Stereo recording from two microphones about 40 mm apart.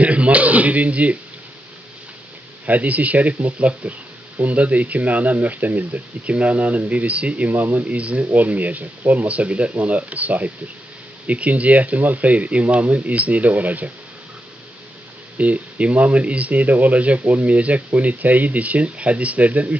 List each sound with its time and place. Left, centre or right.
0.0 s speech: right
2.6 s speech: right
6.2 s speech: right
7.9 s speech: right
15.3 s speech: right